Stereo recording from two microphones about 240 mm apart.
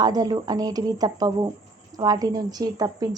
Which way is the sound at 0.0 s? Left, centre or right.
Centre.